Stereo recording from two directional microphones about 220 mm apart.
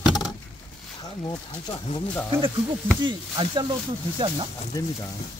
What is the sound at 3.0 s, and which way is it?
Speech, 20° right (ahead or behind).